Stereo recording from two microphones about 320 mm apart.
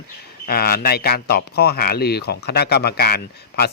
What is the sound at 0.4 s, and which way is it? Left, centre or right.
Speech, left.